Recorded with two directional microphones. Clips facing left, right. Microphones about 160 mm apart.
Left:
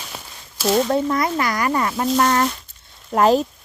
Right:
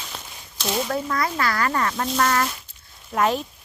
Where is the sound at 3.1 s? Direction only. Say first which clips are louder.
Left 6 dB; 35° left (ahead or behind).